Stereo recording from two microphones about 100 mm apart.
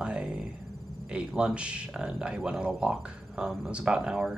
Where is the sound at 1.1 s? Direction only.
10° right (ahead or behind).